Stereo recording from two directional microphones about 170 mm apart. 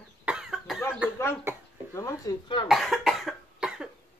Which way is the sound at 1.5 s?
15° right (ahead or behind).